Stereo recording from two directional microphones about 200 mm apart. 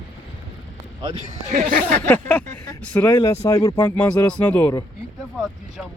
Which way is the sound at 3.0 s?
20° left (ahead or behind).